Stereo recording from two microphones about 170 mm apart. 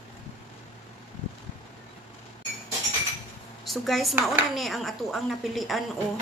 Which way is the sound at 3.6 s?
Centre (ahead or behind).